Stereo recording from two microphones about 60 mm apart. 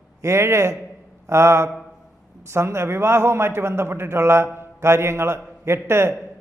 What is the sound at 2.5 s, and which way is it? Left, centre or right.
A man's voice, right.